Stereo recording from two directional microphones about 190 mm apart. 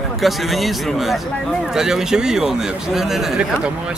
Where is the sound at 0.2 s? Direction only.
Centre (ahead or behind).